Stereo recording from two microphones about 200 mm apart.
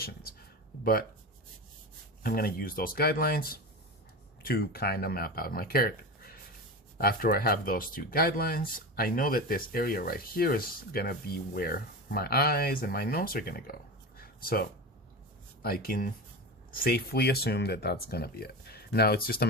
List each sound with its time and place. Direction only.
2.2 s speech: 50° left (ahead or behind)
14.2 s a sound: 50° left (ahead or behind)
15.6 s speech: 50° left (ahead or behind)